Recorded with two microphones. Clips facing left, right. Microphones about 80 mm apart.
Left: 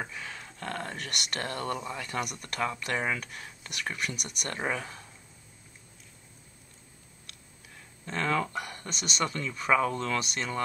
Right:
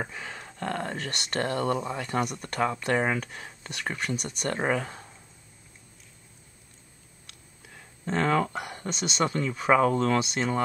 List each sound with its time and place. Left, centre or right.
0.1 s speech: right
8.0 s speech: right
8.5 s speech: right